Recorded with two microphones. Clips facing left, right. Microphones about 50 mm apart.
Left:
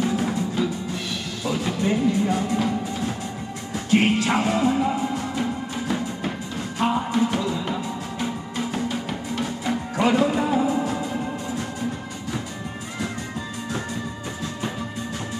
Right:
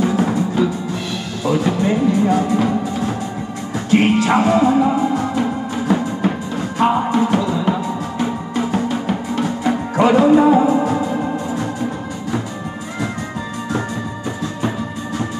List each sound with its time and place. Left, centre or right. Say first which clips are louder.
0.1 s music: right 7 dB; right
1.5 s music: right 7 dB; right
3.7 s music: right 5 dB; right
5.3 s music: right 7 dB; right
6.8 s music: right 7 dB; right
7.2 s music: right 6 dB; right
9.4 s music: right 6 dB; right
10.0 s music: right 9 dB; right
13.7 s music: right 8 dB; right